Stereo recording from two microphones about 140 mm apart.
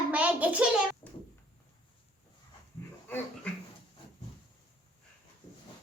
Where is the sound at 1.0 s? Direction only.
20° left (ahead or behind).